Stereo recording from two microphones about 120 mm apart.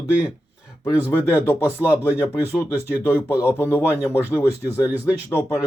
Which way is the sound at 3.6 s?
20° left (ahead or behind).